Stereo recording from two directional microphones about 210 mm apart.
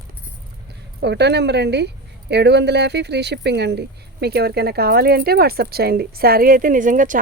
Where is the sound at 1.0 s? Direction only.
55° right (ahead or behind).